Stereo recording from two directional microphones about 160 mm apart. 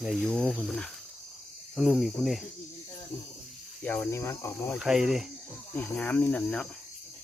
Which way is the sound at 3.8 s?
15° left (ahead or behind).